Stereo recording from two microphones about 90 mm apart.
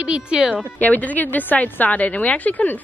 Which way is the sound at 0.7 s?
15° left (ahead or behind).